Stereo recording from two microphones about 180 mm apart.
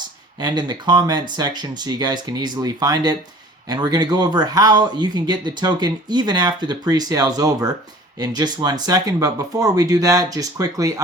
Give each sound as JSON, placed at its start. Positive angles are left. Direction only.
{"t": 0.3, "sound": "speech", "side_deg": -25}